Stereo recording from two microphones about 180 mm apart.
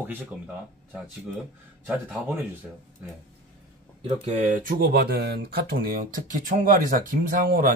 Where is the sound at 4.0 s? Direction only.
30° right (ahead or behind).